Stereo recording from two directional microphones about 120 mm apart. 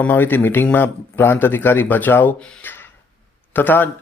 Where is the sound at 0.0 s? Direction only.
15° left (ahead or behind).